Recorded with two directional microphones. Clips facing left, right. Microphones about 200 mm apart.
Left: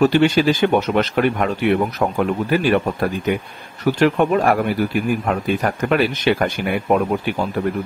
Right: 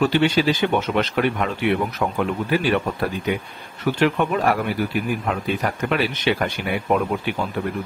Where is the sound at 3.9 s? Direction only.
45° left (ahead or behind).